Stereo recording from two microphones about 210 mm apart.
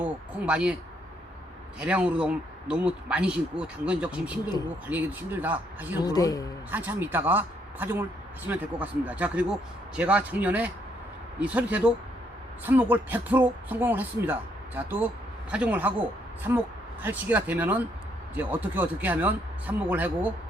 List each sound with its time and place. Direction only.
0.0 s speech: 5° right (ahead or behind)
1.8 s speech: 5° right (ahead or behind)
6.0 s speech: 20° left (ahead or behind)
6.7 s speech: 10° right (ahead or behind)